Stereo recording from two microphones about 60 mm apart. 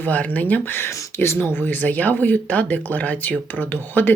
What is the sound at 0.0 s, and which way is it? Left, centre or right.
Speech, left.